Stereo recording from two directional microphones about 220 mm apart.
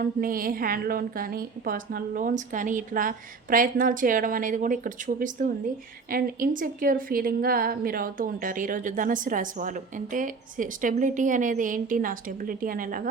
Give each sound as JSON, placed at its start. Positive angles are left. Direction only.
{"t": 0.0, "sound": "a woman's voice", "side_deg": -40}